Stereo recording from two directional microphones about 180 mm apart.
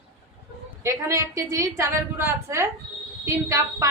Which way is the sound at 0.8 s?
15° right (ahead or behind).